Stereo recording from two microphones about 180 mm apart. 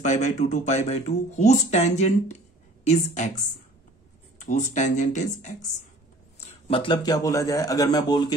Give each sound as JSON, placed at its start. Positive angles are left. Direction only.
{"t": 0.0, "sound": "speech", "side_deg": 40}
{"t": 6.7, "sound": "a man's voice", "side_deg": 30}